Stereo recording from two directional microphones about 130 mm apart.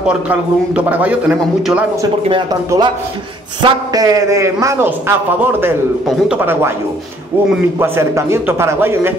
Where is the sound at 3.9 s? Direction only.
30° right (ahead or behind).